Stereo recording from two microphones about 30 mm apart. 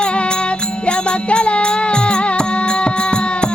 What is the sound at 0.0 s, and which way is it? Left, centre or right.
Music, left.